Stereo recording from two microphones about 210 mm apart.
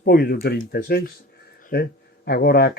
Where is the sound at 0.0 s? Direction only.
45° left (ahead or behind).